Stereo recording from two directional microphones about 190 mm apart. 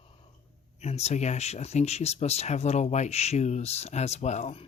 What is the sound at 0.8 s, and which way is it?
Speech, 35° left (ahead or behind).